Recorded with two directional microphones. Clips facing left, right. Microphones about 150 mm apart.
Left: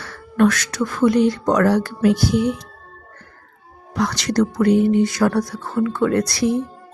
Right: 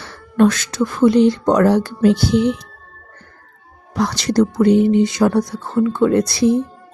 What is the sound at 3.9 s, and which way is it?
Speech, 30° right (ahead or behind).